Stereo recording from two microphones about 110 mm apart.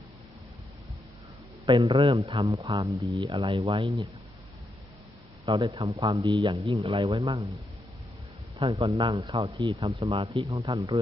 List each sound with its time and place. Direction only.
1.7 s speech: 50° right (ahead or behind)
2.6 s speech: 35° right (ahead or behind)
3.2 s speech: 60° right (ahead or behind)
5.7 s speech: 50° right (ahead or behind)
8.5 s speech: 55° right (ahead or behind)